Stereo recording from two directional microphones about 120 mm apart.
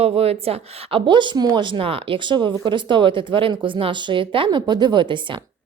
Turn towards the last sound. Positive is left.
turn(degrees=-40)  # may be behind; listen again after turning